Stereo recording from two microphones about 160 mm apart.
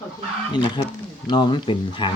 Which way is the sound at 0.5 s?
30° left (ahead or behind).